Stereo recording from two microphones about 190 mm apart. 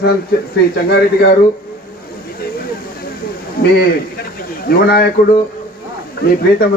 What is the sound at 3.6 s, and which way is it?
A man's voice, 50° left (ahead or behind).